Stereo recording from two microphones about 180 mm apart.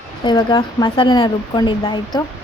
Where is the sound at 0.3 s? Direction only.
20° left (ahead or behind).